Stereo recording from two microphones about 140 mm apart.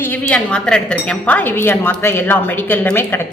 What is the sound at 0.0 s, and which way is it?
Speech, 10° left (ahead or behind).